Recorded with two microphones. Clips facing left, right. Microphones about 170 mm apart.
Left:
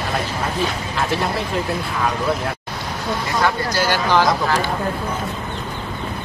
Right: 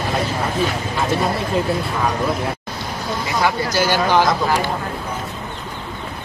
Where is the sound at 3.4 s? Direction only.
15° right (ahead or behind).